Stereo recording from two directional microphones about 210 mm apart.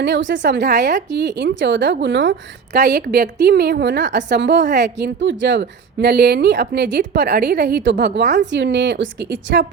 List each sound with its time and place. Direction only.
0.0 s a woman's voice: 60° right (ahead or behind)
2.7 s a woman's voice: 50° right (ahead or behind)